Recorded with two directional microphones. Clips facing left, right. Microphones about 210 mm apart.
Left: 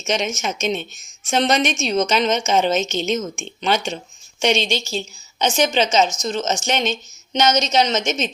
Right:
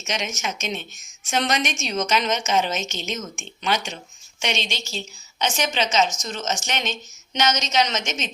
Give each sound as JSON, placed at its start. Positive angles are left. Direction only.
{"t": 0.1, "sound": "a woman's voice", "side_deg": 25}